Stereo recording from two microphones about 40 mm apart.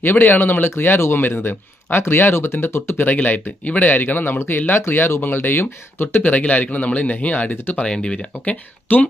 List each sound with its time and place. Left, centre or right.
0.0 s speech: left
3.6 s speech: left
4.4 s speech: left
5.3 s speech: left
7.8 s speech: left
8.9 s speech: left